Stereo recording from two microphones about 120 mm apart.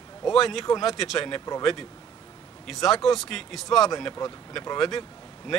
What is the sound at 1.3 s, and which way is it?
Speech, 25° left (ahead or behind).